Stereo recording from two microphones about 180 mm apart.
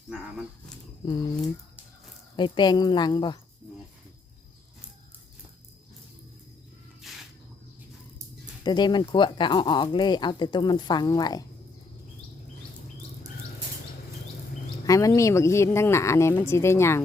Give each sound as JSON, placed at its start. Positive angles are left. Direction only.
{"t": 1.0, "sound": "speech", "side_deg": 25}
{"t": 2.3, "sound": "speech", "side_deg": 25}
{"t": 7.0, "sound": "a sound", "side_deg": 0}
{"t": 8.6, "sound": "speech", "side_deg": 25}
{"t": 14.8, "sound": "speech", "side_deg": 20}